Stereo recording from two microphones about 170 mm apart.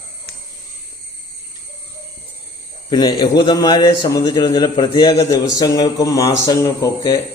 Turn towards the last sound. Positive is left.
turn(degrees=20)  # may be behind; listen again after turning